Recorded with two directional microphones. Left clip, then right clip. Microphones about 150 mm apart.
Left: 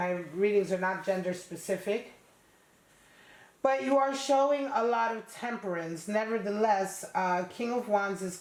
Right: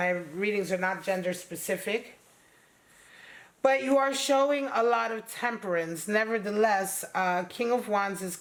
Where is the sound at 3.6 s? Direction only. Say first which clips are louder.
Right 2 dB; 35° right (ahead or behind).